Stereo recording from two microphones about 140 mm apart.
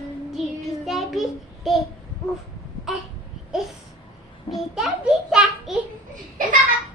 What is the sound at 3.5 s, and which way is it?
Babbling, centre (ahead or behind).